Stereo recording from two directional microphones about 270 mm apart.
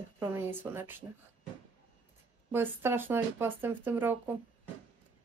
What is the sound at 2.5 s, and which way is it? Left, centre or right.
Speech, centre.